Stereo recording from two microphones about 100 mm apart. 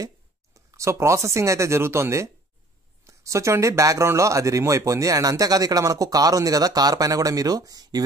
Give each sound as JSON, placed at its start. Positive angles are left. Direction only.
{"t": 0.7, "sound": "speech", "side_deg": -30}